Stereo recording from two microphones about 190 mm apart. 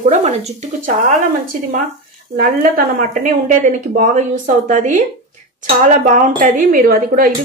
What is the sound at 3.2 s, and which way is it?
Speech, 45° right (ahead or behind).